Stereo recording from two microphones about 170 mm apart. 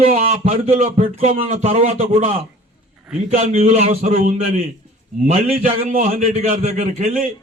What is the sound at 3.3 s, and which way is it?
A man's voice, 45° right (ahead or behind).